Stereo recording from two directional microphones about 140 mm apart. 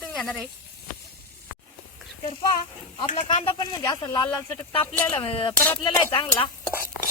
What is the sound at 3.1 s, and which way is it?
Speech, 65° left (ahead or behind).